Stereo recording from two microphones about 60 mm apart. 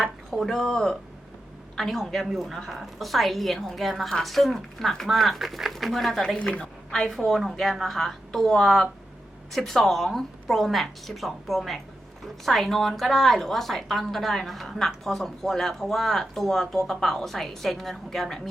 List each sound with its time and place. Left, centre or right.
0.0 s a woman's voice: centre
6.4 s a woman's voice: centre
6.9 s a woman's voice: centre